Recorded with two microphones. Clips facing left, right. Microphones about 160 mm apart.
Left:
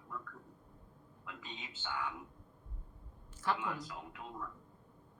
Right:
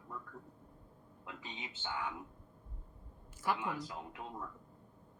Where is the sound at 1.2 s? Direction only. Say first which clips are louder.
Right 1 dB; 20° right (ahead or behind).